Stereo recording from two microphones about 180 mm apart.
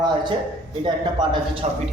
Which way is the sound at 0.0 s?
25° right (ahead or behind).